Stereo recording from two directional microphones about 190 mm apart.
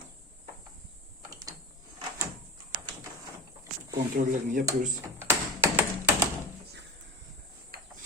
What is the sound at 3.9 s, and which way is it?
Speech, 45° right (ahead or behind).